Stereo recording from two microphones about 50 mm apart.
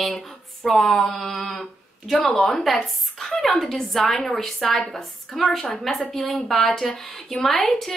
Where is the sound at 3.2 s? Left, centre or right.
Centre.